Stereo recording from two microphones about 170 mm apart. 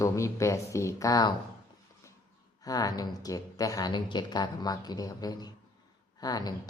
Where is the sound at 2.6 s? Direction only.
20° left (ahead or behind).